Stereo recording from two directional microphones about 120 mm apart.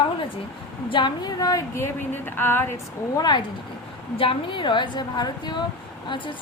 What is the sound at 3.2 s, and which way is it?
Speech, 35° left (ahead or behind).